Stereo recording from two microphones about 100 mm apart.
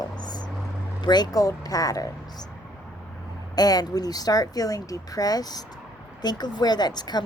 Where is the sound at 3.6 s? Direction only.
40° left (ahead or behind).